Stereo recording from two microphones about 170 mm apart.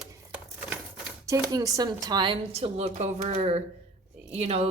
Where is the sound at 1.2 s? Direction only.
20° right (ahead or behind); by 4.7 s 40° right (ahead or behind).